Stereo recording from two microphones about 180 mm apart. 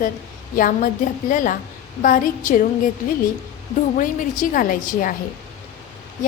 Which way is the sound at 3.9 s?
50° left (ahead or behind).